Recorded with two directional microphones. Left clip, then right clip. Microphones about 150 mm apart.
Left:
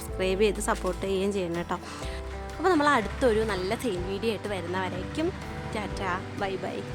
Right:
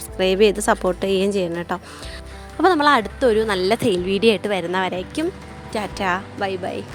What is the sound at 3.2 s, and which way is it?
Speech, 45° right (ahead or behind).